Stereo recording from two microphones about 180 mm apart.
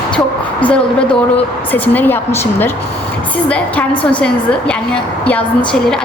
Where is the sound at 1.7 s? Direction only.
10° left (ahead or behind).